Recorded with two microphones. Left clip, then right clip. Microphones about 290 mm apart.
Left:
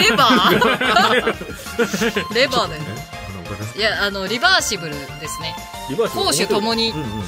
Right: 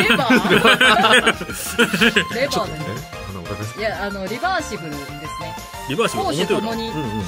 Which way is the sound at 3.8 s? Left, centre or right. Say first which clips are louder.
Left 5 dB; left.